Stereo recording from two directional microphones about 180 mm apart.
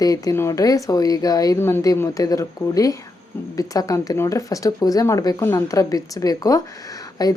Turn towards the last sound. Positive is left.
turn(degrees=20)  # may be behind; listen again after turning